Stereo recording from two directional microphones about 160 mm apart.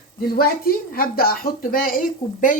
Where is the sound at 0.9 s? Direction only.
65° left (ahead or behind).